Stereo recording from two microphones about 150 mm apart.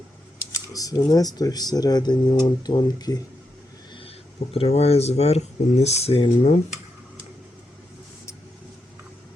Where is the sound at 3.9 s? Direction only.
40° left (ahead or behind).